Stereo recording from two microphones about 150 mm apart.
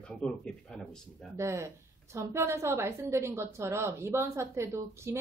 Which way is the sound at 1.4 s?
20° right (ahead or behind).